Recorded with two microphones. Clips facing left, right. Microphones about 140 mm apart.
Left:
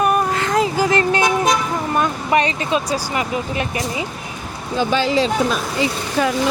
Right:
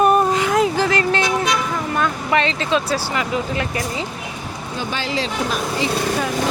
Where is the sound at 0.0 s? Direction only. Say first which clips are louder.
Right 3 dB; 20° right (ahead or behind).